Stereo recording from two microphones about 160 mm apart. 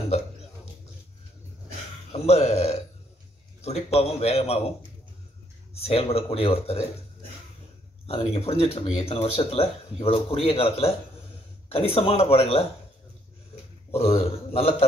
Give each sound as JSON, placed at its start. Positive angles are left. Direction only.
{"t": 2.1, "sound": "a sound", "side_deg": 40}
{"t": 3.6, "sound": "speech", "side_deg": 40}
{"t": 5.8, "sound": "speech", "side_deg": 40}
{"t": 8.1, "sound": "speech", "side_deg": 40}
{"t": 13.9, "sound": "speech", "side_deg": 40}